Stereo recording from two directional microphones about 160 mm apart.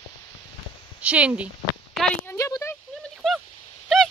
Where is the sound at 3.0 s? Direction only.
Centre (ahead or behind).